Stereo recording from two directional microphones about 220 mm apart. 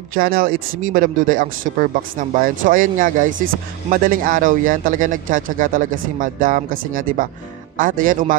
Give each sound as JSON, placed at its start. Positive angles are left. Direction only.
{"t": 0.1, "sound": "speech", "side_deg": -40}